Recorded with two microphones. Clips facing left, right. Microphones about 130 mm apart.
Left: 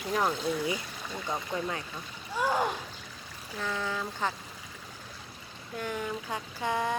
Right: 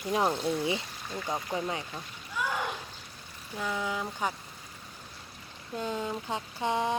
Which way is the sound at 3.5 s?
15° right (ahead or behind).